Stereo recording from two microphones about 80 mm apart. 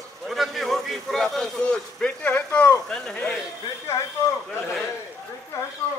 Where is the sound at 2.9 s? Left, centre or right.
Centre.